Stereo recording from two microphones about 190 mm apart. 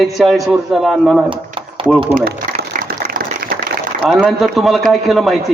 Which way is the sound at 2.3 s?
50° right (ahead or behind).